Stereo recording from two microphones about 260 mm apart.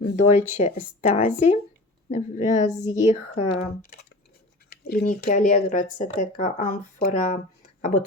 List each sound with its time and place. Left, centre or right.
0.2 s speech: left
4.7 s speech: left